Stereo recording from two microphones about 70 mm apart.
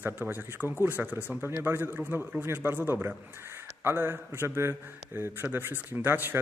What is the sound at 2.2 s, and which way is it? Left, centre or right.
Speech, centre.